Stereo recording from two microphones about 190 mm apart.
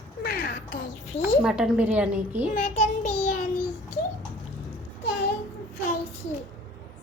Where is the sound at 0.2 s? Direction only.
50° left (ahead or behind).